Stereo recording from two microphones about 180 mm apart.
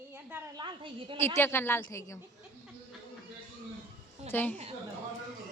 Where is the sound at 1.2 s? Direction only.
15° left (ahead or behind).